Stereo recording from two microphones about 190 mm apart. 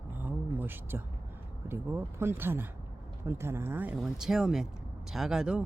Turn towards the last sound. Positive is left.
turn(degrees=-5)  # may be behind; listen again after turning